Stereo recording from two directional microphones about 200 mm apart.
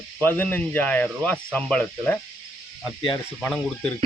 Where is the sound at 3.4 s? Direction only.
5° left (ahead or behind).